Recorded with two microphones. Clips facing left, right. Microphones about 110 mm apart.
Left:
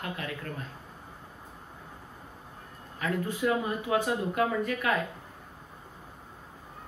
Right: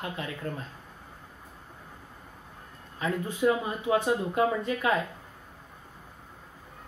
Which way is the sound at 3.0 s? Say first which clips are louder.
Right 1 dB; 25° right (ahead or behind).